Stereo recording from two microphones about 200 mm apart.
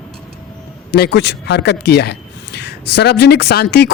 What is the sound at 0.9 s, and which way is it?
Speech, 55° left (ahead or behind).